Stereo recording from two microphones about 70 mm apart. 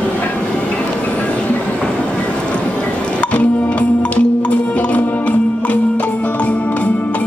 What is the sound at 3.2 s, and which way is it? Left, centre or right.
Music, centre.